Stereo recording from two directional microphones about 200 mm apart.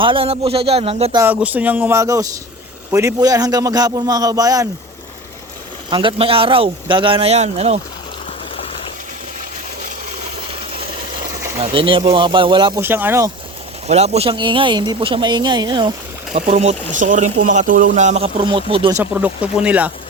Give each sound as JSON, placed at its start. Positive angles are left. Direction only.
{"t": 0.0, "sound": "speech", "side_deg": -25}
{"t": 1.1, "sound": "a man's voice", "side_deg": -10}
{"t": 5.9, "sound": "speech", "side_deg": -25}
{"t": 11.6, "sound": "speech", "side_deg": -25}
{"t": 12.8, "sound": "a man's voice", "side_deg": -10}
{"t": 13.8, "sound": "speech", "side_deg": -30}
{"t": 16.5, "sound": "speech", "side_deg": -35}
{"t": 18.9, "sound": "a man's voice", "side_deg": -10}